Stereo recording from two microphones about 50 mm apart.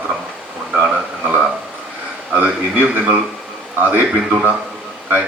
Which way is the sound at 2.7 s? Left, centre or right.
Right.